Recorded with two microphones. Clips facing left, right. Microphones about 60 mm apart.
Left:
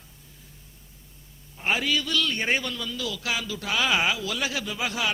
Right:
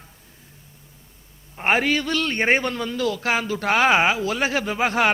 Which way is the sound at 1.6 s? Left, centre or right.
Right.